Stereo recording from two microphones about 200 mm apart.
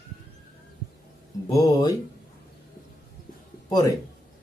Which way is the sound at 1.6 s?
20° left (ahead or behind).